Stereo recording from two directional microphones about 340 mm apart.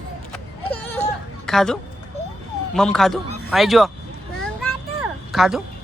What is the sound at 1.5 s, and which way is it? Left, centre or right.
Speech, centre.